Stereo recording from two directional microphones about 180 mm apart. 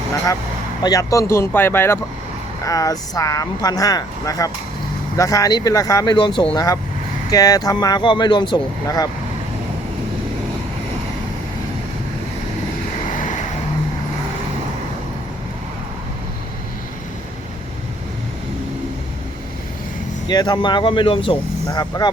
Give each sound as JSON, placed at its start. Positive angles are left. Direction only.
{"t": 0.8, "sound": "speech", "side_deg": 20}
{"t": 20.2, "sound": "speech", "side_deg": 20}